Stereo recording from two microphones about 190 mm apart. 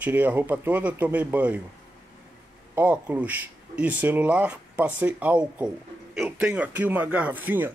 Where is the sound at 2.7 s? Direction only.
10° right (ahead or behind).